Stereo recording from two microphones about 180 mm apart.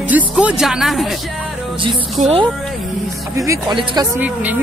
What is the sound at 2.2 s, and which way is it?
Speech, 40° right (ahead or behind).